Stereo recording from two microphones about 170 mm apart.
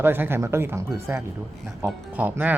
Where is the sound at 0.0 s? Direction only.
10° right (ahead or behind).